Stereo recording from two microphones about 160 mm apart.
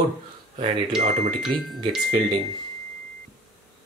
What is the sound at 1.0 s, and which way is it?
Speech, 45° right (ahead or behind).